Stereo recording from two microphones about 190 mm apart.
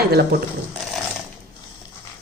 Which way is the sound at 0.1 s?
55° right (ahead or behind).